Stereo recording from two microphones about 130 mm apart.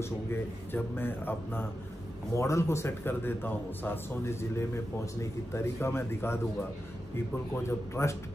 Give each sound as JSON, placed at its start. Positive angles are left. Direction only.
{"t": 0.0, "sound": "a man's voice", "side_deg": 20}
{"t": 7.5, "sound": "a man's voice", "side_deg": 20}